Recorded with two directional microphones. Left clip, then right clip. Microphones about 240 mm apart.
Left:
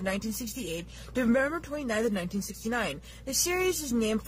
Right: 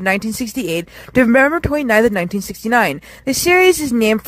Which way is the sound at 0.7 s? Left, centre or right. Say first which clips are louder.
Right 18 dB; right.